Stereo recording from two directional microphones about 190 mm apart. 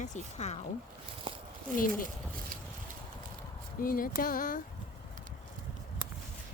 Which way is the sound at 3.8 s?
50° left (ahead or behind).